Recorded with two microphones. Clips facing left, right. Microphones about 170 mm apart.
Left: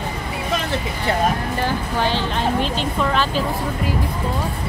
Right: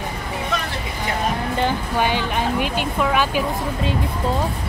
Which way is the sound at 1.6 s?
15° right (ahead or behind).